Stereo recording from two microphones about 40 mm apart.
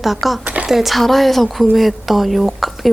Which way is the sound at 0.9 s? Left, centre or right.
Centre.